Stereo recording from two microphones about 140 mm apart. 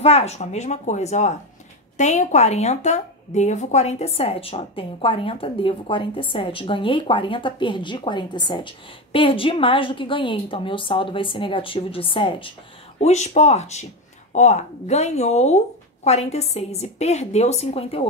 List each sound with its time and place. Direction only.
0.0 s speech: 50° left (ahead or behind)
13.0 s speech: 50° left (ahead or behind)